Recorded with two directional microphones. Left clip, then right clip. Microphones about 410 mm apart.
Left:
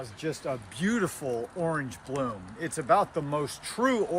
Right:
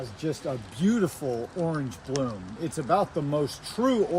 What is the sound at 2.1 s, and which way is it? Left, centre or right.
Speech, centre.